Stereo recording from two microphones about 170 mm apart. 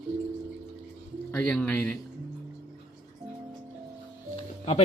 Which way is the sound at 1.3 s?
10° left (ahead or behind).